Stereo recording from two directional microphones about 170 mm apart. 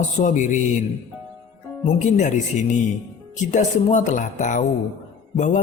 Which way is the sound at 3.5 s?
45° left (ahead or behind).